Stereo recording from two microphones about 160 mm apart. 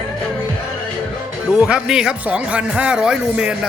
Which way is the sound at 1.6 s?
5° right (ahead or behind).